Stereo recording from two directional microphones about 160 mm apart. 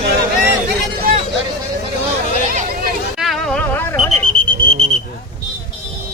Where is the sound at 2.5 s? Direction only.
50° right (ahead or behind).